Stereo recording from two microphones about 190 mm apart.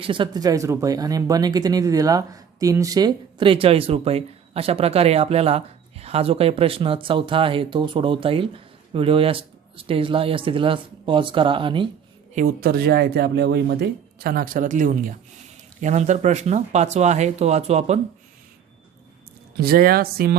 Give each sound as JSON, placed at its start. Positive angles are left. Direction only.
{"t": 0.0, "sound": "speech", "side_deg": -25}
{"t": 12.3, "sound": "speech", "side_deg": -45}
{"t": 19.5, "sound": "speech", "side_deg": -50}